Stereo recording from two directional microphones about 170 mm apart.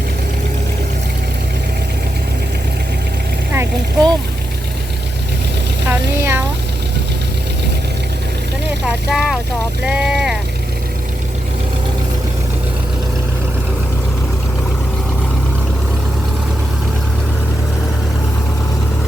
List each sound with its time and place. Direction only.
3.5 s vehicle: 15° right (ahead or behind)
5.9 s a sound: 15° right (ahead or behind)
9.0 s speech: centre (ahead or behind)
9.8 s vehicle: 5° right (ahead or behind)